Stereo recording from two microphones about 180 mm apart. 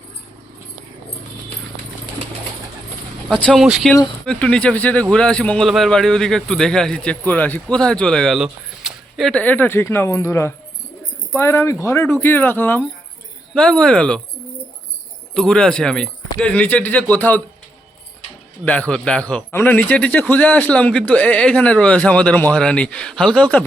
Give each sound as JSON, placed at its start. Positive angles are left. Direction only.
{"t": 3.2, "sound": "speech", "side_deg": 5}
{"t": 15.4, "sound": "speech", "side_deg": 5}
{"t": 18.6, "sound": "speech", "side_deg": 10}